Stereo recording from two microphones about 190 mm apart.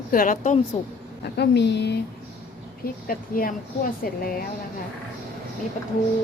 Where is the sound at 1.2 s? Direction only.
60° left (ahead or behind).